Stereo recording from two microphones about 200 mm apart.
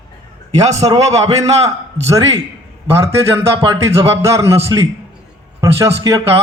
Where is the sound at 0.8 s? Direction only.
15° right (ahead or behind).